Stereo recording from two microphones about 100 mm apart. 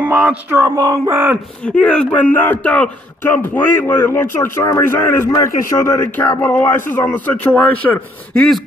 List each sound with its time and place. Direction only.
0.0 s speech: 10° right (ahead or behind)
0.6 s a sound: 30° right (ahead or behind)
1.1 s speech: 20° right (ahead or behind)
1.8 s a man's voice: 10° left (ahead or behind)